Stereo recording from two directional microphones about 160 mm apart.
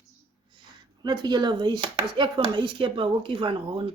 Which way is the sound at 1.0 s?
25° right (ahead or behind).